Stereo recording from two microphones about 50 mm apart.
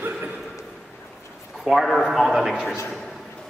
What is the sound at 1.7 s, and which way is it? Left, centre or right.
A man's voice, centre.